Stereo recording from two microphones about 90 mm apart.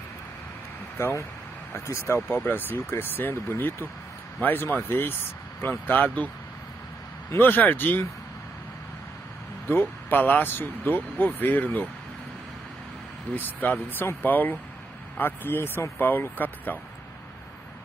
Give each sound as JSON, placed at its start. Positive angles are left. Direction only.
{"t": 0.9, "sound": "speech", "side_deg": 30}
{"t": 9.7, "sound": "speech", "side_deg": 25}
{"t": 13.3, "sound": "speech", "side_deg": 20}